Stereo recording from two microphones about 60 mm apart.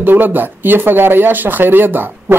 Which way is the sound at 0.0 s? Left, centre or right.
Right.